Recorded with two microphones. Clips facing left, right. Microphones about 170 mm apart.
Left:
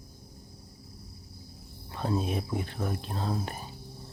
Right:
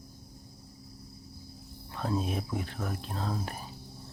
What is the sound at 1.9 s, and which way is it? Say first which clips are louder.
Speech: left 2 dB; centre (ahead or behind).